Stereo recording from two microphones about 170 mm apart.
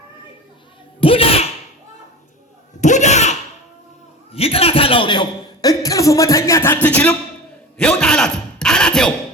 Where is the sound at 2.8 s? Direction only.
45° left (ahead or behind).